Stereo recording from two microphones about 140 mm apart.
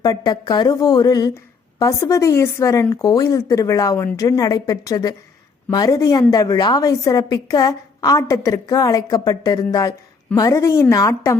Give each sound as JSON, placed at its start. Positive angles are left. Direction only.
{"t": 0.0, "sound": "a woman's voice", "side_deg": 25}